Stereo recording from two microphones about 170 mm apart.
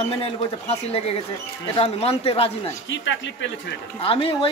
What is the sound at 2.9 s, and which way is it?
Speech, 90° left.